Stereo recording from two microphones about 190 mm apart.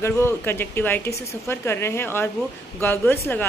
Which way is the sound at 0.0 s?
10° left (ahead or behind).